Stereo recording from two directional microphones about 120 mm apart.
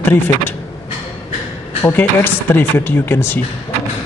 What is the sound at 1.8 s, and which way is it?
Speech, 15° left (ahead or behind).